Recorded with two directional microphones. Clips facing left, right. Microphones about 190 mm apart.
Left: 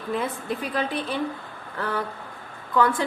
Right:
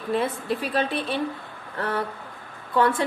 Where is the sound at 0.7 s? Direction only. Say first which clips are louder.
Right 1 dB; 25° right (ahead or behind).